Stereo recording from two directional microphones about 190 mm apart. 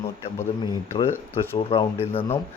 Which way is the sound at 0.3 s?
20° left (ahead or behind).